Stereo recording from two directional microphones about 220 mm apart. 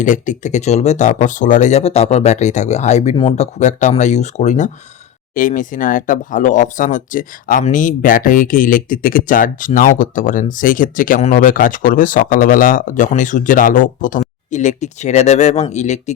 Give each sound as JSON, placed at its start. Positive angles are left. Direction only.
{"t": 0.0, "sound": "speech", "side_deg": 35}